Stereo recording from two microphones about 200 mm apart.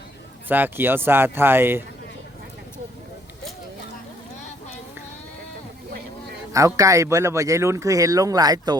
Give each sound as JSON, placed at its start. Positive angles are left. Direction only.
{"t": 0.4, "sound": "speech", "side_deg": -10}
{"t": 6.5, "sound": "speech", "side_deg": -15}